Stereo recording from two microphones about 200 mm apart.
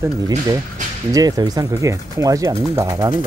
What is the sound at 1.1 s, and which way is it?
Speech, 20° right (ahead or behind).